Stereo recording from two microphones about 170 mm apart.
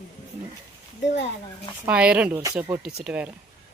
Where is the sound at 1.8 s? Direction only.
5° right (ahead or behind).